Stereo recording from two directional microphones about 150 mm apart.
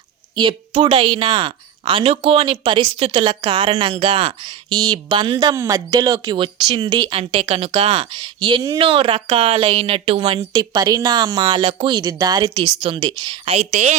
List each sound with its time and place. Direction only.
0.3 s speech: 35° right (ahead or behind)
12.6 s speech: 35° right (ahead or behind)